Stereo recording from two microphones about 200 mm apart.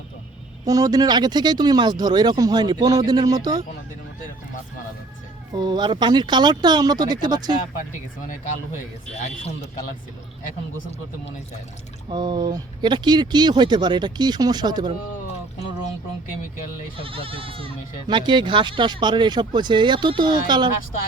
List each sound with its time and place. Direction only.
0.6 s speech: 15° right (ahead or behind)
5.5 s speech: 20° right (ahead or behind)
12.0 s speech: 20° right (ahead or behind)
17.0 s speech: 25° right (ahead or behind)